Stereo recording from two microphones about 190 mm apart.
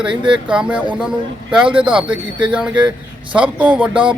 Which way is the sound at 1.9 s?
5° right (ahead or behind).